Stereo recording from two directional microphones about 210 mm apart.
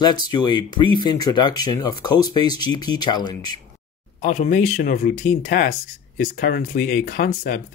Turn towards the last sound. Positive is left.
turn(degrees=45)  # may be behind; listen again after turning